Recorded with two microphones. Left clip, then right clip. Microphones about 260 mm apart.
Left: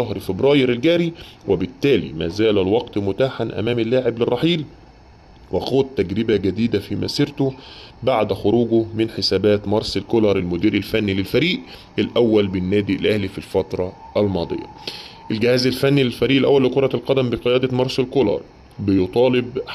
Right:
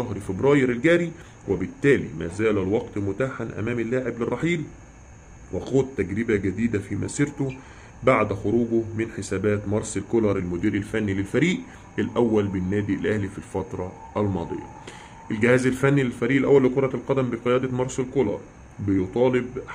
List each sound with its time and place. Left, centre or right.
0.1 s speech: centre
5.6 s speech: centre
6.4 s speech: left
6.7 s speech: centre